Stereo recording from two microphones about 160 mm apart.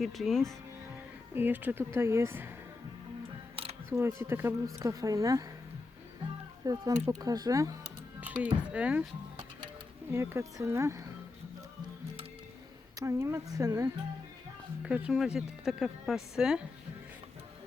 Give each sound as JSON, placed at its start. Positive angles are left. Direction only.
{"t": 0.0, "sound": "speech", "side_deg": 0}
{"t": 1.3, "sound": "speech", "side_deg": -10}
{"t": 3.5, "sound": "camera", "side_deg": -35}
{"t": 3.8, "sound": "speech", "side_deg": -15}
{"t": 6.7, "sound": "speech", "side_deg": -20}
{"t": 8.2, "sound": "speech", "side_deg": -10}
{"t": 10.1, "sound": "speech", "side_deg": -15}
{"t": 13.0, "sound": "speech", "side_deg": -20}
{"t": 14.8, "sound": "speech", "side_deg": -5}